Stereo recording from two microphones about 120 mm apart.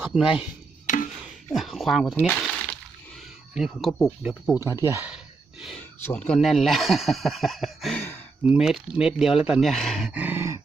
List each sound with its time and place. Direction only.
0.0 s speech: 10° right (ahead or behind)
0.9 s a sound: 90° left
1.5 s speech: centre (ahead or behind)
2.1 s speech: 15° left (ahead or behind)
3.5 s speech: centre (ahead or behind)
4.5 s speech: 25° right (ahead or behind)
5.0 s a sound: 5° right (ahead or behind)
6.1 s speech: 10° left (ahead or behind)
10.1 s grunt: 15° right (ahead or behind)